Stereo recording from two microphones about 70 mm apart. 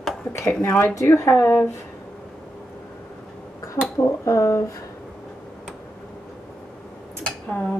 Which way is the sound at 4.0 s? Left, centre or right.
Left.